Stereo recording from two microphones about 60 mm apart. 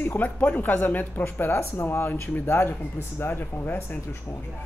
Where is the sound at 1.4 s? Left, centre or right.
Left.